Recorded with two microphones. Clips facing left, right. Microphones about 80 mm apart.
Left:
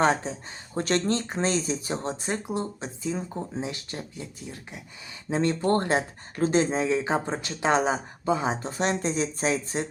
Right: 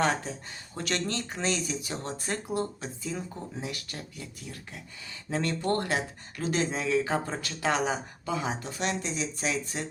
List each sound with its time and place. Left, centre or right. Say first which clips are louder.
0.0 s speech: left 4 dB; left